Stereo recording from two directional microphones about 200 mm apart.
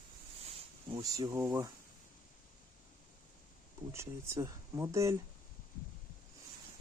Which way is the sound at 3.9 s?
15° right (ahead or behind).